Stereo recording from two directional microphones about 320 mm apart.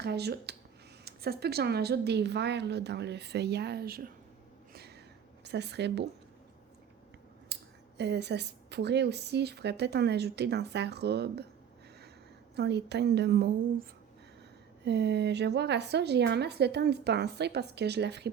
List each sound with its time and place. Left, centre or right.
0.0 s speech: right
4.7 s a sound: right
5.4 s a woman's voice: right
7.5 s speech: right
12.5 s speech: right
14.8 s speech: right